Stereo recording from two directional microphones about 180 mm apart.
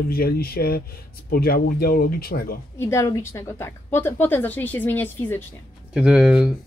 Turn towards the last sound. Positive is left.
turn(degrees=-5)  # may be behind; listen again after turning